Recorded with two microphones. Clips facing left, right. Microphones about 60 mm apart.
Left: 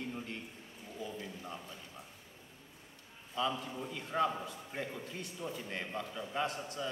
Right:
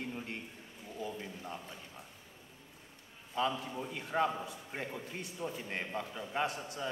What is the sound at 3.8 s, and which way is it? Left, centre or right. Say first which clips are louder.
A man's voice: right 1 dB; centre.